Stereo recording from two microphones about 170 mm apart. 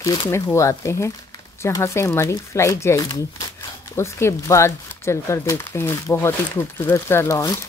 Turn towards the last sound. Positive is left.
turn(degrees=15)  # may be behind; listen again after turning